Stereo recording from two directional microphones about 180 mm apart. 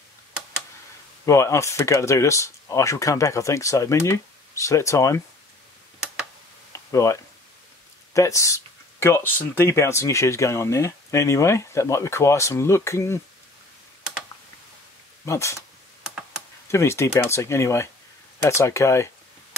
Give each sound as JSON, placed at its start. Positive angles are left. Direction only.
{"t": 1.2, "sound": "speech", "side_deg": 15}
{"t": 6.9, "sound": "speech", "side_deg": 15}
{"t": 15.2, "sound": "speech", "side_deg": 15}
{"t": 16.7, "sound": "speech", "side_deg": 15}